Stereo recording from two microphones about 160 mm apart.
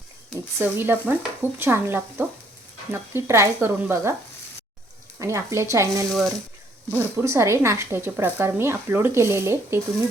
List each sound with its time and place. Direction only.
0.6 s speech: 15° right (ahead or behind)
5.2 s speech: 20° right (ahead or behind)